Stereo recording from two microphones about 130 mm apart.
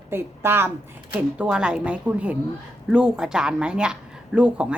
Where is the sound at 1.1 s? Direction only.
5° right (ahead or behind).